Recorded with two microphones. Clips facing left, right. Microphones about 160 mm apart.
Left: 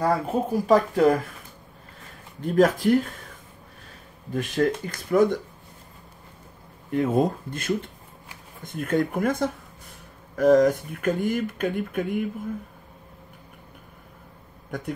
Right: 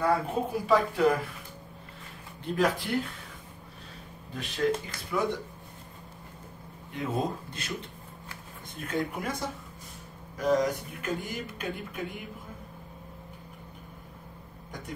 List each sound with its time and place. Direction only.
0.0 s speech: 40° left (ahead or behind)
2.5 s speech: 45° left (ahead or behind)
4.3 s speech: 50° left (ahead or behind)
6.9 s speech: 50° left (ahead or behind)
8.8 s speech: 50° left (ahead or behind)